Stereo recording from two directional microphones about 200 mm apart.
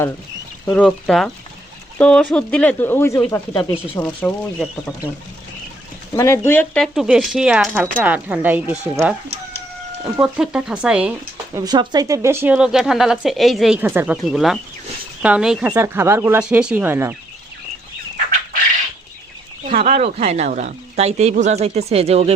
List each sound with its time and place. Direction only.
0.7 s speech: 5° left (ahead or behind)
6.1 s speech: 15° left (ahead or behind); by 9.1 s 5° right (ahead or behind)
10.2 s speech: 5° right (ahead or behind)
11.5 s speech: 20° right (ahead or behind)
19.7 s speech: 35° right (ahead or behind)